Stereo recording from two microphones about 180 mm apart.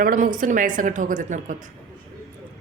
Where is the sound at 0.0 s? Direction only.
50° right (ahead or behind).